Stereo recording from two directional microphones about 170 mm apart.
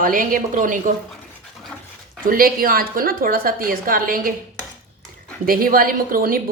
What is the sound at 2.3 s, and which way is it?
A woman's voice, 60° right (ahead or behind).